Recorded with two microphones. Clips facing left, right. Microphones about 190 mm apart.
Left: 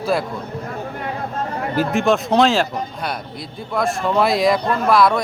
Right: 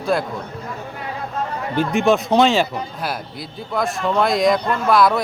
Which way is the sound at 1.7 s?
5° left (ahead or behind).